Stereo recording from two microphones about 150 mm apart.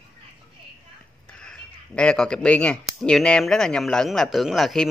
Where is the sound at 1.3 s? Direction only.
5° left (ahead or behind).